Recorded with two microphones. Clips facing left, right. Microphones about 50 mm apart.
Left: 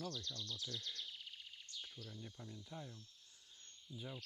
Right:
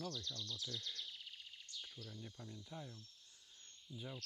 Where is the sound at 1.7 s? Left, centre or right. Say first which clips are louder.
Even; left.